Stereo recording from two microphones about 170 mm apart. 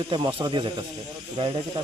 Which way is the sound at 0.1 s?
30° right (ahead or behind).